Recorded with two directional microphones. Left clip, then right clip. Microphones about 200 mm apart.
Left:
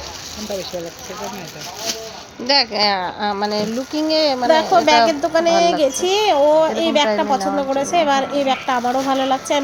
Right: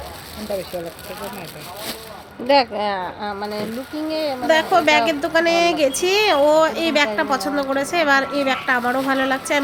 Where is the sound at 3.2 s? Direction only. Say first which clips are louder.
Left 6 dB; 30° left (ahead or behind).